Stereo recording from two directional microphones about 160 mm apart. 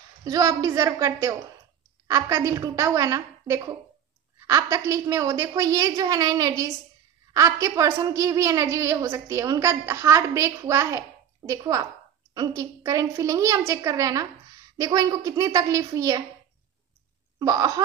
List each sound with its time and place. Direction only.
0.2 s a woman's voice: 20° right (ahead or behind)
17.4 s a woman's voice: 25° right (ahead or behind)